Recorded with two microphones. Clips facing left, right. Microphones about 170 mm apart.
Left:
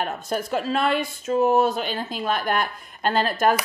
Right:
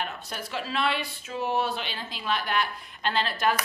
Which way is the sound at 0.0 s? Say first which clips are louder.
Left 8 dB; 45° left (ahead or behind).